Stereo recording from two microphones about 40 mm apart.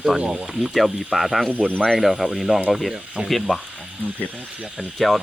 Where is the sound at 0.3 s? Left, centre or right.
Centre.